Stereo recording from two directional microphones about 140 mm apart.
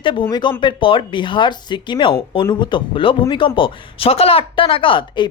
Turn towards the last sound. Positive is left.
turn(degrees=35)  # may be behind; listen again after turning